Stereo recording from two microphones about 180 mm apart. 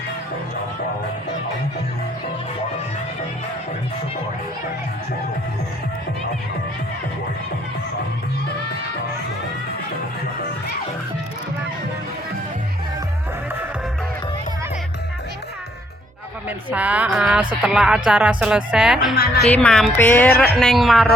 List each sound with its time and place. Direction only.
16.5 s speech: 10° right (ahead or behind)
19.1 s a woman's voice: 65° left (ahead or behind)
19.5 s speech: 5° left (ahead or behind)